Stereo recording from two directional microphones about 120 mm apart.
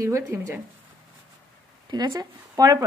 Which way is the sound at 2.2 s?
30° right (ahead or behind).